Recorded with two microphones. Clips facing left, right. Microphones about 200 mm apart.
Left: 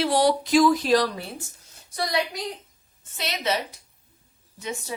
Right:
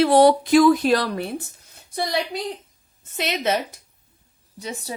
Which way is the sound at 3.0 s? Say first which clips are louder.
Right 5 dB; 50° right (ahead or behind).